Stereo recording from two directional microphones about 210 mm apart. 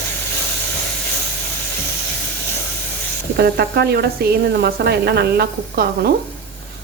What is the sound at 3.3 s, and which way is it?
Speech, 50° right (ahead or behind).